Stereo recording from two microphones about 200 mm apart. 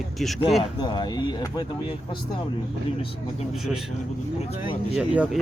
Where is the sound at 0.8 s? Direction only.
20° left (ahead or behind).